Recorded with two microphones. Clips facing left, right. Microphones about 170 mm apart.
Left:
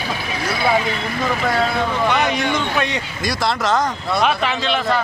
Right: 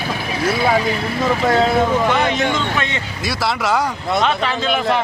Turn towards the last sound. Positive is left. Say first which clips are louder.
# right 1 dB
turn(degrees=0)  # may be behind; listen again after turning